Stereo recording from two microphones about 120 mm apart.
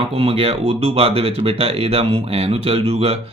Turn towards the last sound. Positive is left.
turn(degrees=-55)  # may be behind; listen again after turning